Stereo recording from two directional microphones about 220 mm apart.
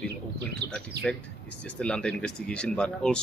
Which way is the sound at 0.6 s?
50° right (ahead or behind).